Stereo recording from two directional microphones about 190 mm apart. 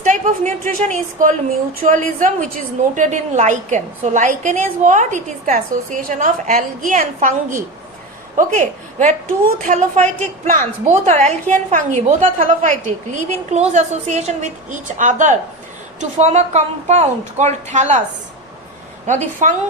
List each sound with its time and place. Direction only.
0.0 s a woman's voice: 40° right (ahead or behind)
19.0 s a woman's voice: 40° right (ahead or behind)